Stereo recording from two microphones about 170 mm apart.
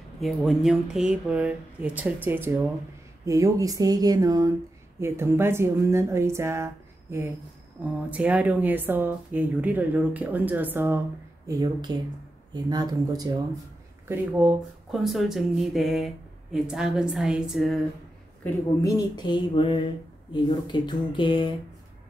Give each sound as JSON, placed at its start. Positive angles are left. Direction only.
{"t": 0.2, "sound": "speech", "side_deg": 0}
{"t": 11.4, "sound": "speech", "side_deg": -20}
{"t": 14.4, "sound": "speech", "side_deg": 0}
{"t": 18.4, "sound": "speech", "side_deg": 20}